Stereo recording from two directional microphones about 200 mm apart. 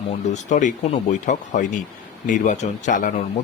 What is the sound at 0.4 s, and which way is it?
Speech, 40° left (ahead or behind).